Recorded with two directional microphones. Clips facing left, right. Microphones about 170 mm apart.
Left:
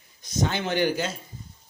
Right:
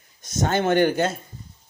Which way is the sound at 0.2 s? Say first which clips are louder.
Right 5 dB; 50° right (ahead or behind).